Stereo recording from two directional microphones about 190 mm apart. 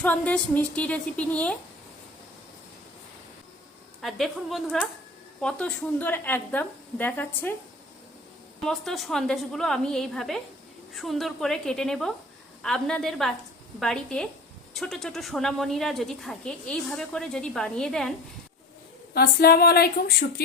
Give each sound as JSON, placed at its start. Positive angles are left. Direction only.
{"t": 0.0, "sound": "a woman's voice", "side_deg": 10}
{"t": 4.0, "sound": "a woman's voice", "side_deg": 0}
{"t": 8.6, "sound": "speech", "side_deg": 0}
{"t": 19.1, "sound": "speech", "side_deg": 55}